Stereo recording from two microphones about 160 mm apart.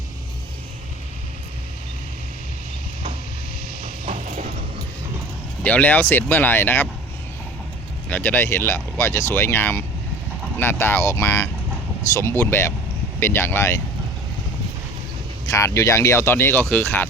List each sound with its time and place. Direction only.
4.0 s a sound: 50° right (ahead or behind)
5.6 s speech: 10° left (ahead or behind)
8.1 s speech: 10° left (ahead or behind)
15.4 s speech: 20° left (ahead or behind)